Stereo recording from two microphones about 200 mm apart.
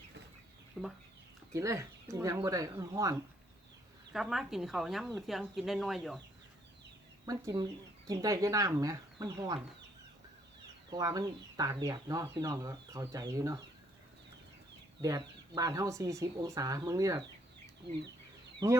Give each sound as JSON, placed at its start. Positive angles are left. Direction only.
{"t": 0.8, "sound": "chicken", "side_deg": 0}
{"t": 1.5, "sound": "speech", "side_deg": -15}
{"t": 4.1, "sound": "speech", "side_deg": 0}
{"t": 7.3, "sound": "speech", "side_deg": -20}
{"t": 10.8, "sound": "speech", "side_deg": -20}
{"t": 15.0, "sound": "speech", "side_deg": -15}
{"t": 18.6, "sound": "speech", "side_deg": -15}